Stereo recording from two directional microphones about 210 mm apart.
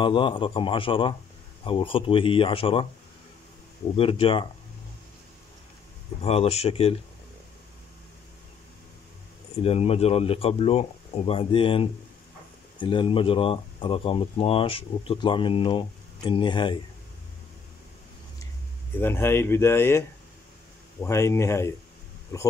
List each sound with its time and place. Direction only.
0.0 s speech: 25° left (ahead or behind)
3.9 s speech: 25° left (ahead or behind)
6.2 s speech: 30° left (ahead or behind)
9.6 s speech: 30° left (ahead or behind)
18.9 s speech: 10° left (ahead or behind)